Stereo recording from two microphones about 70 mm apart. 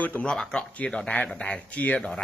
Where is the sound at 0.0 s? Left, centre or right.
Left.